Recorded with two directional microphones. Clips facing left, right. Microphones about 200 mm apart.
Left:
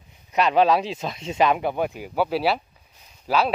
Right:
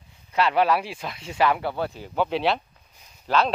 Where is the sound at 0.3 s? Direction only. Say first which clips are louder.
Left 3 dB; 15° left (ahead or behind).